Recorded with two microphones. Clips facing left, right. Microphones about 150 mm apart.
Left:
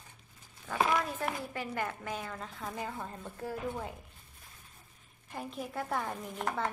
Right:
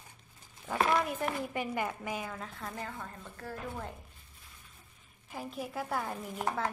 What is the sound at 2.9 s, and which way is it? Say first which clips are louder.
Speech: left 3 dB; 15° left (ahead or behind).